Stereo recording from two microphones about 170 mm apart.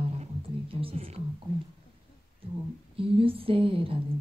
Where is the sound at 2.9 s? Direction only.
35° right (ahead or behind).